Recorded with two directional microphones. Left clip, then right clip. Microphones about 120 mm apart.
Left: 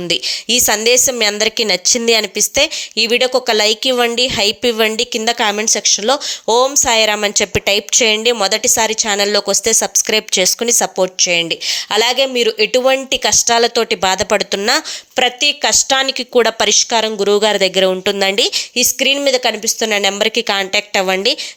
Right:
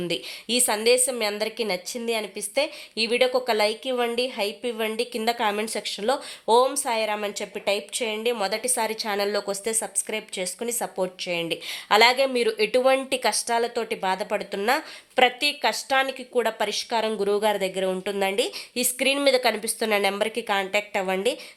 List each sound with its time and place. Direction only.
0.1 s speech: 40° left (ahead or behind); by 4.9 s 55° left (ahead or behind)
4.9 s speech: 45° left (ahead or behind)
10.0 s speech: 60° left (ahead or behind)
15.4 s speech: 40° left (ahead or behind)
18.8 s speech: 30° left (ahead or behind); by 21.3 s 45° left (ahead or behind)